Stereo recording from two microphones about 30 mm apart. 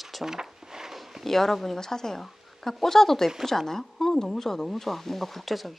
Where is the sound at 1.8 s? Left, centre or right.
Centre.